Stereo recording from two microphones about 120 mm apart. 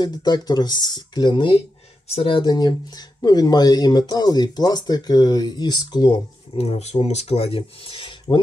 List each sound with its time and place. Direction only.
0.0 s speech: 35° left (ahead or behind)